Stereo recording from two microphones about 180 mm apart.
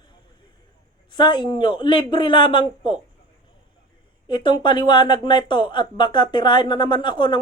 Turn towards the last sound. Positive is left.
turn(degrees=25)  # may be behind; listen again after turning